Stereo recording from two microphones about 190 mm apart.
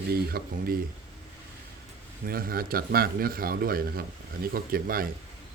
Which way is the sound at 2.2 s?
50° right (ahead or behind).